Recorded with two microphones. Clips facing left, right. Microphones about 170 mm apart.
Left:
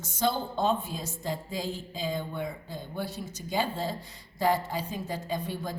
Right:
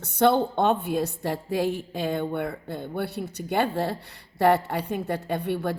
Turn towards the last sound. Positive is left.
turn(degrees=-65)  # may be behind; listen again after turning